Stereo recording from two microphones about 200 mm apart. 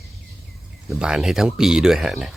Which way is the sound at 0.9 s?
Centre (ahead or behind).